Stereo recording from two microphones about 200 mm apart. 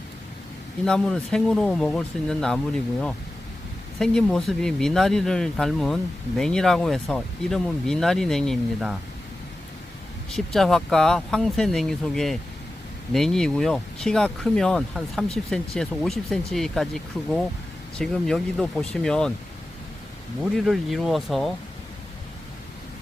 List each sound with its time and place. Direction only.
0.9 s speech: 5° left (ahead or behind)
10.3 s speech: centre (ahead or behind)
20.4 s speech: centre (ahead or behind)